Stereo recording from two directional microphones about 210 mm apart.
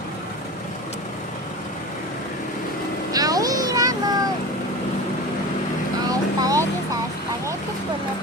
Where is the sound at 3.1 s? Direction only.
15° right (ahead or behind).